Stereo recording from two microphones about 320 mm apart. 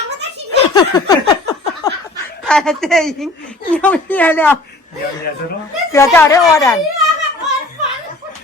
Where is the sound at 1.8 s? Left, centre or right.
Centre.